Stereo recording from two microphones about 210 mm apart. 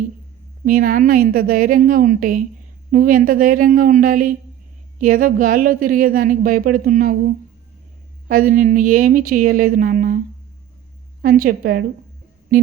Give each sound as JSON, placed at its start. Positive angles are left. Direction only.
{"t": 0.6, "sound": "a woman's voice", "side_deg": -40}
{"t": 11.2, "sound": "a woman's voice", "side_deg": -40}